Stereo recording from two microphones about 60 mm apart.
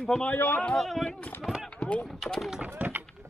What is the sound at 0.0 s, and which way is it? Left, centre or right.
Speech, centre.